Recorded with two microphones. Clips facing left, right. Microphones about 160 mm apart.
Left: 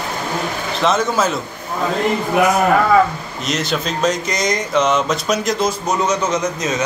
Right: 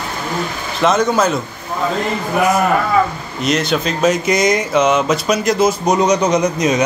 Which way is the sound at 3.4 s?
Centre (ahead or behind).